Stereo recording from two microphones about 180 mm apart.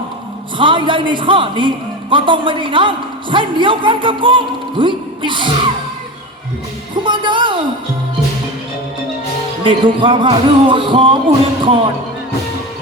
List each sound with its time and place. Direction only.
0.6 s a man's voice: 25° right (ahead or behind)
7.0 s speech: 25° right (ahead or behind)
9.6 s a man's voice: 25° right (ahead or behind)